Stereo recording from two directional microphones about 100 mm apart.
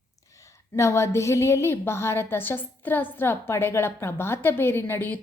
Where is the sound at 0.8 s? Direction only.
30° left (ahead or behind).